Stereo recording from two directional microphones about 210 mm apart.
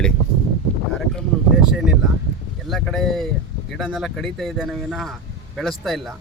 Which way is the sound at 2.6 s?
Centre (ahead or behind).